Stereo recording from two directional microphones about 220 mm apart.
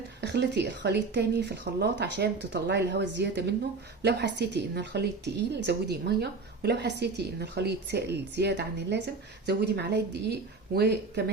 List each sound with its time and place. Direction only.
0.2 s a woman's voice: 50° right (ahead or behind)